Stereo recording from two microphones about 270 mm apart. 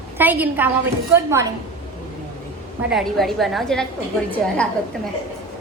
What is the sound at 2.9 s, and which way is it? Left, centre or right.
Speech, centre.